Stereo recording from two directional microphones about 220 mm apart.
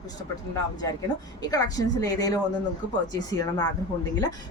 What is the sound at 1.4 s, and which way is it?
Speech, 15° left (ahead or behind).